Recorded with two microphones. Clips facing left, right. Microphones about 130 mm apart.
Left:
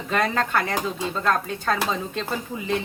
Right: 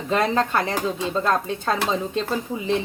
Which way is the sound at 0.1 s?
25° right (ahead or behind).